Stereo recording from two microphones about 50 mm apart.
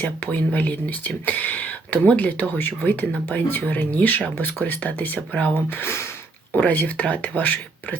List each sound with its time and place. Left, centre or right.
0.0 s speech: left
5.6 s speech: left
6.6 s speech: left